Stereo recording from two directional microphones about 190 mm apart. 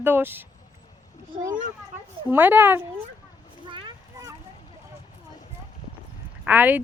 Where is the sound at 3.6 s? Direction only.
25° right (ahead or behind).